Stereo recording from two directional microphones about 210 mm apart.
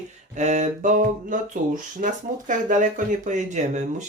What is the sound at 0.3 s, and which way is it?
Speech, 35° right (ahead or behind).